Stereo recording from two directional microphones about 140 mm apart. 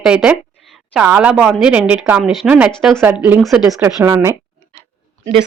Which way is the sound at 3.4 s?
Centre (ahead or behind).